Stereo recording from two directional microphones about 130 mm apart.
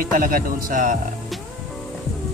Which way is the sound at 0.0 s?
90° right.